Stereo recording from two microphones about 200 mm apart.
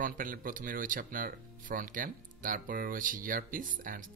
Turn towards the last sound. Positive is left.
turn(degrees=-40)  # may be behind; listen again after turning